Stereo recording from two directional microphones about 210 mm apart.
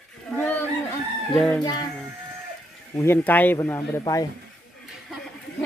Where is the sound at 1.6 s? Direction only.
20° left (ahead or behind).